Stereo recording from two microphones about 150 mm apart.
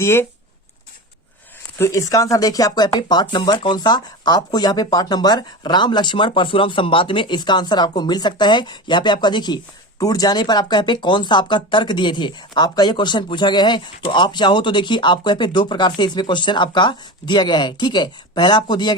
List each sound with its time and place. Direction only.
0.0 s speech: 15° left (ahead or behind)
1.8 s speech: 20° left (ahead or behind)